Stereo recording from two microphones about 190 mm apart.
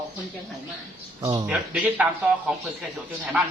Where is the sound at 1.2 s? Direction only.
25° right (ahead or behind).